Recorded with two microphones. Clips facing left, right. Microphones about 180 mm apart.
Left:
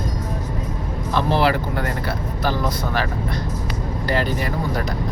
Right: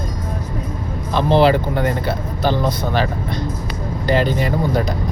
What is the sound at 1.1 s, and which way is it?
Speech, 20° right (ahead or behind).